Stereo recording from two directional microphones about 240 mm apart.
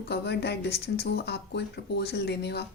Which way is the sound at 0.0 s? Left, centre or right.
Left.